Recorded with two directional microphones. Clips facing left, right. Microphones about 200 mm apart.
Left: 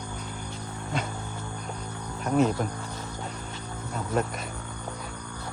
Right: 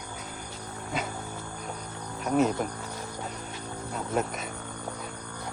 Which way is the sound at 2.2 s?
Centre (ahead or behind).